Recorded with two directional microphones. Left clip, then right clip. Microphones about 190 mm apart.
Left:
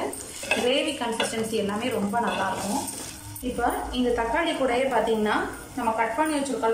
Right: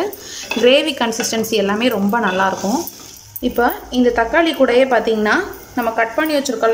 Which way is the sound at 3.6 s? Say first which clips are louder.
Right 10 dB; 55° right (ahead or behind).